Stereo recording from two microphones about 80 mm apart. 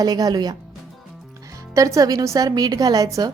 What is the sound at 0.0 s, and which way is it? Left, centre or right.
Speech, right.